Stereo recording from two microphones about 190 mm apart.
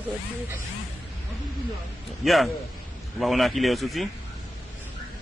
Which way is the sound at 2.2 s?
Centre (ahead or behind).